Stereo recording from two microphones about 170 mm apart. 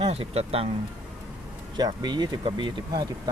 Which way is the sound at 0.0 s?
35° right (ahead or behind).